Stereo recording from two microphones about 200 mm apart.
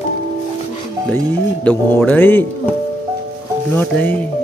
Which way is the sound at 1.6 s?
5° left (ahead or behind).